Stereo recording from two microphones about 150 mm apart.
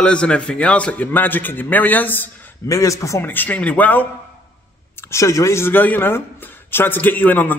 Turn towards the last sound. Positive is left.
turn(degrees=10)  # may be behind; listen again after turning